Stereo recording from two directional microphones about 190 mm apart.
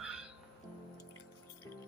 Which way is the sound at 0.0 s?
5° right (ahead or behind).